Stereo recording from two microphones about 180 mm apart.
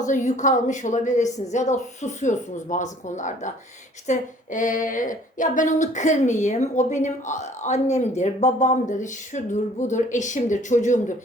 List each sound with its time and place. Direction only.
0.0 s a woman's voice: 45° left (ahead or behind)